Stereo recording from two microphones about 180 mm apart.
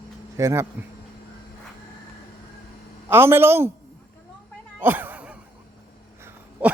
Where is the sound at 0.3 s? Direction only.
15° right (ahead or behind).